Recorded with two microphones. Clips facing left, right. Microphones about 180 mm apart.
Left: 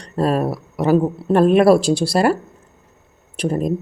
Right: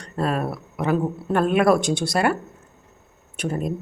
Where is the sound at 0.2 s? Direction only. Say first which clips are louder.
Left 6 dB; 35° left (ahead or behind).